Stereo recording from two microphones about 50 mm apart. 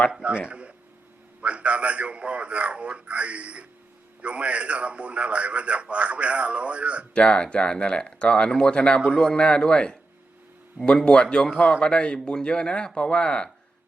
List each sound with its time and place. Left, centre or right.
0.1 s a man's voice: right
7.1 s a man's voice: left